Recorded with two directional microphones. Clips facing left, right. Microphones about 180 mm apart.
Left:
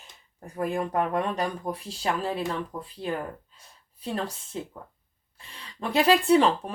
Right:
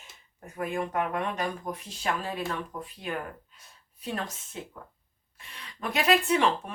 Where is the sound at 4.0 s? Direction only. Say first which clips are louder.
Left 3 dB; 30° left (ahead or behind).